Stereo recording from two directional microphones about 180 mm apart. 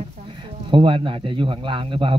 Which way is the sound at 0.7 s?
30° right (ahead or behind).